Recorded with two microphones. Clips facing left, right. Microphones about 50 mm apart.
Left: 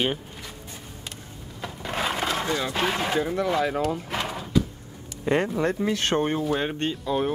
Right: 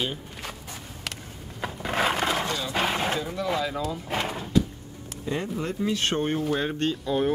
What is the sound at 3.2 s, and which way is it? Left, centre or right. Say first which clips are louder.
Speech: left 4 dB; left.